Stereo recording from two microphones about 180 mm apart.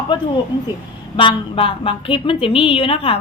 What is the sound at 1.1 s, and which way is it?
A woman's voice, 30° left (ahead or behind).